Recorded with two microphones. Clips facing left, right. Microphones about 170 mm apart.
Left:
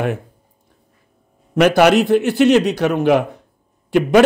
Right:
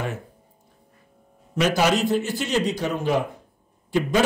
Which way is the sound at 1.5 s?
65° left (ahead or behind).